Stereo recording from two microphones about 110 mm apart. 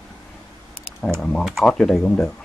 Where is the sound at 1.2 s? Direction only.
5° left (ahead or behind).